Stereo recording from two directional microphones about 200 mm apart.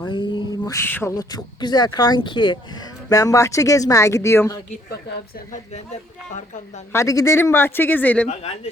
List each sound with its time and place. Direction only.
0.0 s speech: 20° left (ahead or behind)
5.5 s speech: 35° left (ahead or behind)
6.9 s speech: 15° left (ahead or behind)
8.3 s speech: 30° left (ahead or behind)